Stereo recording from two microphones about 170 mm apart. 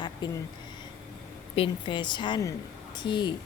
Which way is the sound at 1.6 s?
30° left (ahead or behind).